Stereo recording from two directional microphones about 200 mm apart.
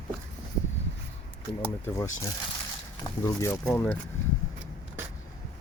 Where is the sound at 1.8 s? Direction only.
15° left (ahead or behind).